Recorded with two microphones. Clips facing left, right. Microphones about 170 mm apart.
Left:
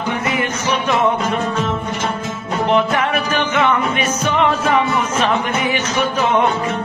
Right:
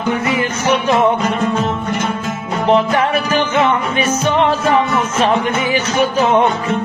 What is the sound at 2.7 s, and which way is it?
Music, 30° right (ahead or behind).